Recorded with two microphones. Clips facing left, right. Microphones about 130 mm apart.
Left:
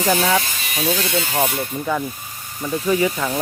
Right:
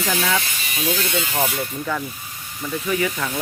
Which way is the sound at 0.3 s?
25° left (ahead or behind).